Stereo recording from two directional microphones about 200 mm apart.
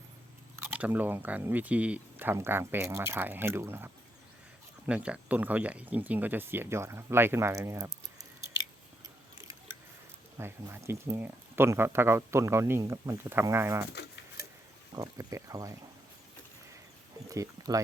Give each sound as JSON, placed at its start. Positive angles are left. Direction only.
{"t": 0.5, "sound": "speech", "side_deg": -10}
{"t": 10.3, "sound": "speech", "side_deg": -15}
{"t": 13.9, "sound": "a sound", "side_deg": 55}
{"t": 14.9, "sound": "speech", "side_deg": -15}
{"t": 17.2, "sound": "speech", "side_deg": -15}